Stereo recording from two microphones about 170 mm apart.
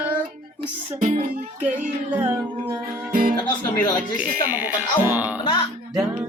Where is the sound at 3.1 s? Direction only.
55° right (ahead or behind).